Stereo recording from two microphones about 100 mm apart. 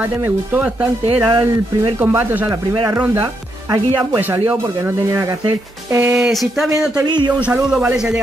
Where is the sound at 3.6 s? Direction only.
40° right (ahead or behind).